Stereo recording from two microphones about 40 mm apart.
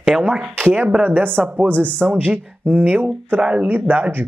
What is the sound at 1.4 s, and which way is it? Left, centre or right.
Speech, right.